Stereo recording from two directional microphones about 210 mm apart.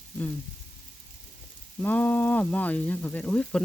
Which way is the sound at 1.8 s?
5° left (ahead or behind).